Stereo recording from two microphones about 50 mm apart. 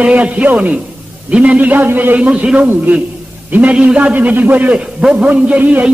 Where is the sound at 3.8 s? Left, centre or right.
Right.